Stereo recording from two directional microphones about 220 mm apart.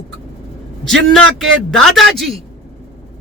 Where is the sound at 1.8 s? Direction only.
Centre (ahead or behind).